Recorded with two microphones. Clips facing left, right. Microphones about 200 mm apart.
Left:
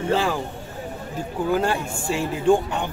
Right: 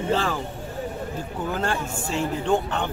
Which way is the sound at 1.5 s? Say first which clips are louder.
Left 4 dB; 10° left (ahead or behind).